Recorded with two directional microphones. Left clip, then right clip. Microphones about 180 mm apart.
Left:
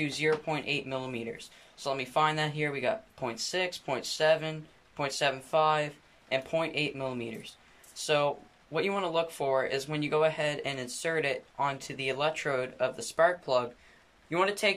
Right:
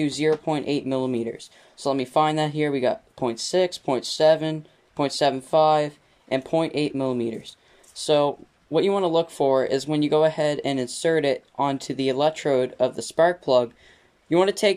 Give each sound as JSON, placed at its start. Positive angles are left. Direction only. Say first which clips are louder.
{"t": 0.0, "sound": "speech", "louder": "right 7 dB", "side_deg": -30}